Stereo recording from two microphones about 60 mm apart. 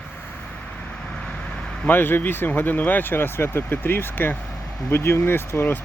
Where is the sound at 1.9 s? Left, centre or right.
Left.